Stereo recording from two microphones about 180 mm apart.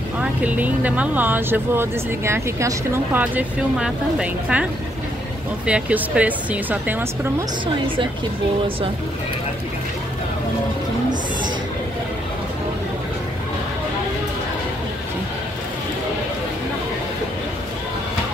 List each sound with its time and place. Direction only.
0.2 s speech: 10° right (ahead or behind)
5.7 s speech: 5° right (ahead or behind)
7.6 s a woman's voice: 30° right (ahead or behind)